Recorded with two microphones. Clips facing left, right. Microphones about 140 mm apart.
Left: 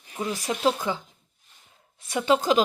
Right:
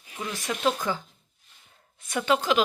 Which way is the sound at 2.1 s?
30° left (ahead or behind).